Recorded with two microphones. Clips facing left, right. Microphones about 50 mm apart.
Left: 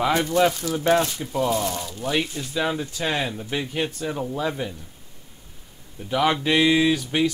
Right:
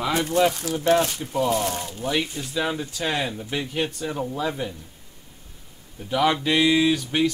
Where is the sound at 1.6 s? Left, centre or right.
Right.